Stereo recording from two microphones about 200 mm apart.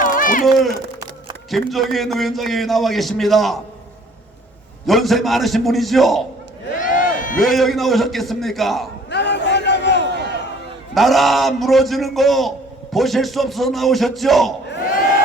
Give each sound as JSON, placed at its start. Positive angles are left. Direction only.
{"t": 0.0, "sound": "a sound", "side_deg": 45}
{"t": 0.4, "sound": "a man's voice", "side_deg": 0}
{"t": 4.9, "sound": "a man's voice", "side_deg": 0}
{"t": 6.7, "sound": "a sound", "side_deg": 40}
{"t": 7.3, "sound": "a man's voice", "side_deg": 0}
{"t": 9.0, "sound": "crowd", "side_deg": 60}
{"t": 10.9, "sound": "a man's voice", "side_deg": 0}